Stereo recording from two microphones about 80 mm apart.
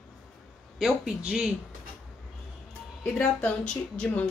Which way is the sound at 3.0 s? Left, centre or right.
Centre.